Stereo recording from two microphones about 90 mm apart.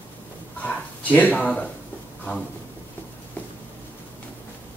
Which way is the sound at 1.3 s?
15° left (ahead or behind).